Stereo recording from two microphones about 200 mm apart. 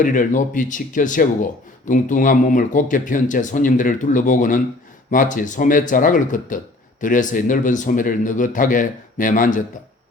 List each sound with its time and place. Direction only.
0.0 s speech: 40° left (ahead or behind)